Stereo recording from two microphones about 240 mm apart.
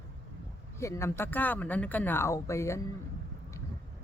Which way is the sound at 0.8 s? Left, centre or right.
Centre.